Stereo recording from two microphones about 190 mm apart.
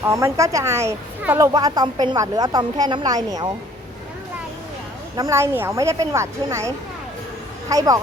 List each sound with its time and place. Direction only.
0.0 s a woman's voice: 15° right (ahead or behind)
5.1 s speech: 15° right (ahead or behind)